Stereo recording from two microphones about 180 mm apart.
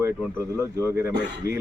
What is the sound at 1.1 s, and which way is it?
Speech, 70° right (ahead or behind).